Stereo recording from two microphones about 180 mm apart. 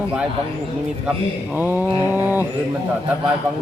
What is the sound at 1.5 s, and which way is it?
Speech, 10° right (ahead or behind).